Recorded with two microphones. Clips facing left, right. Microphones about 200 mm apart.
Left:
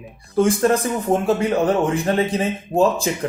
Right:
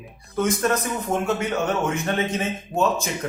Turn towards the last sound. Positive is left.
turn(degrees=35)  # may be behind; listen again after turning